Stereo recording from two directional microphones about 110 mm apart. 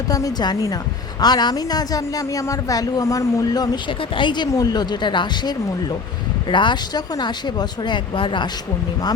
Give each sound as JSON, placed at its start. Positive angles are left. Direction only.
{"t": 0.1, "sound": "a woman's voice", "side_deg": 35}